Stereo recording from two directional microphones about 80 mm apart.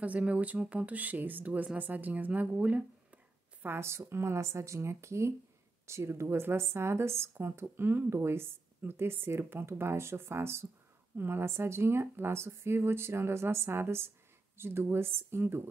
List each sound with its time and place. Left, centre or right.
0.0 s speech: centre
3.6 s speech: right